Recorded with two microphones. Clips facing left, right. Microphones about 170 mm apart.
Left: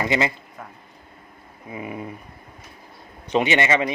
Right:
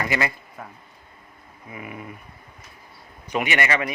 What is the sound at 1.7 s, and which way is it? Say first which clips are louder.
Speech: left 5 dB; 25° left (ahead or behind).